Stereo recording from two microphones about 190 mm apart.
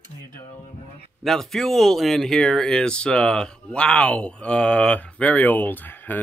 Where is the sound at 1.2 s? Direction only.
Centre (ahead or behind).